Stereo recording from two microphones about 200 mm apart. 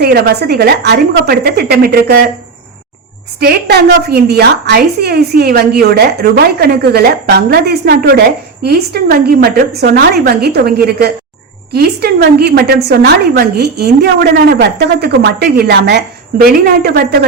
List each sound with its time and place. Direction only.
0.0 s a woman's voice: 50° right (ahead or behind)
3.4 s a woman's voice: 55° right (ahead or behind)